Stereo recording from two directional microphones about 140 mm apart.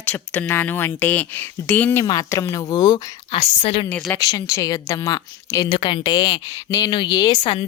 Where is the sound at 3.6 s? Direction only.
45° left (ahead or behind).